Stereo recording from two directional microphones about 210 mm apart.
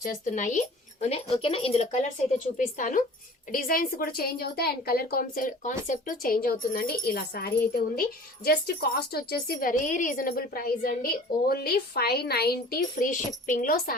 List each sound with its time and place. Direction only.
0.0 s a woman's voice: 40° left (ahead or behind)